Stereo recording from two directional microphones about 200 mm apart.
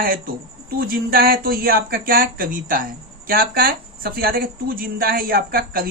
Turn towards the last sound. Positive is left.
turn(degrees=-45)  # may be behind; listen again after turning